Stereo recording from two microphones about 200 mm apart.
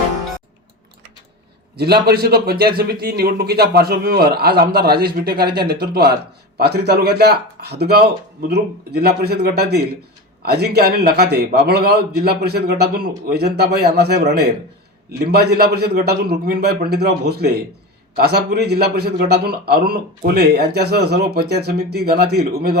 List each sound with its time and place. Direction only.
1.7 s a man's voice: 55° right (ahead or behind)